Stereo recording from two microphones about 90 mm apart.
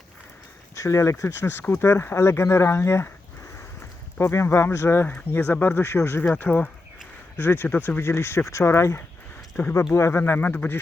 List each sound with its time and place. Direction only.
0.8 s speech: 35° left (ahead or behind)
4.2 s speech: 30° left (ahead or behind)